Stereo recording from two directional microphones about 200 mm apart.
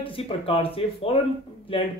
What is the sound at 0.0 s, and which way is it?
Speech, 30° left (ahead or behind).